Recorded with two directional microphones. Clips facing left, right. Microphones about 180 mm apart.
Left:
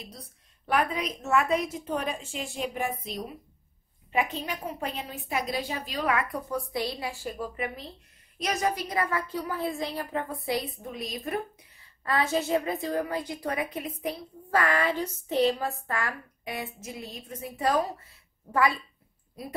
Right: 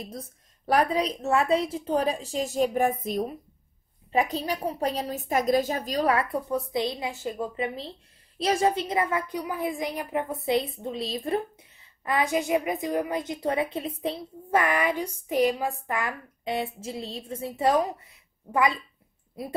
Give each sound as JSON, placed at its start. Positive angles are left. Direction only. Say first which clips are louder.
{"t": 0.0, "sound": "a woman's voice", "louder": "right 7 dB", "side_deg": -45}
{"t": 4.1, "sound": "a woman's voice", "louder": "right 4 dB", "side_deg": -35}